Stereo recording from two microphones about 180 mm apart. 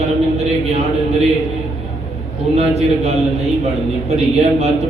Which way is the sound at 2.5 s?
35° right (ahead or behind).